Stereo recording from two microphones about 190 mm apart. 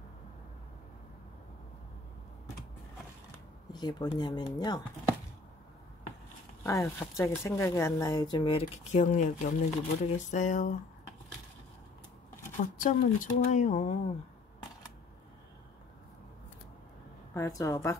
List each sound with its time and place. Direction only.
3.7 s speech: 20° left (ahead or behind)
6.6 s speech: 15° left (ahead or behind)
8.9 s speech: 40° left (ahead or behind)
12.5 s speech: 45° left (ahead or behind)
17.3 s speech: 15° left (ahead or behind)